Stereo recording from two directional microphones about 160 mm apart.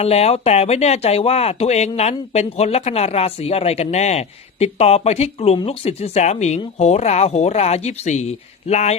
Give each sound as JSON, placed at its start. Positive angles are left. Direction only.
{"t": 0.0, "sound": "speech", "side_deg": 40}